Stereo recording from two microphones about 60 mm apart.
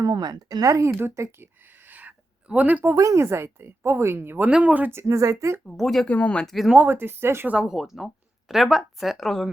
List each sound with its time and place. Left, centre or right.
0.0 s speech: right
1.1 s a sound: right
2.9 s speech: right
4.4 s speech: right
4.9 s speech: right
5.6 s speech: centre
6.1 s speech: left
6.4 s speech: centre
6.8 s speech: right
7.6 s speech: centre